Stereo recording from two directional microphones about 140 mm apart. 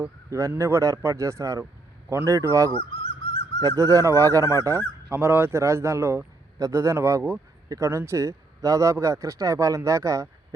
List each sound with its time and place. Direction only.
0.0 s a man's voice: 20° right (ahead or behind)
2.9 s a sound: 45° left (ahead or behind)
3.6 s a man's voice: 25° right (ahead or behind)